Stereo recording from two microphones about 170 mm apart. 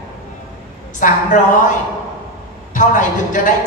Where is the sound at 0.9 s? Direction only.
50° left (ahead or behind).